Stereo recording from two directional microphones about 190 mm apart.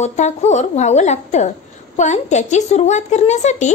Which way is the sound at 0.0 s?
35° left (ahead or behind).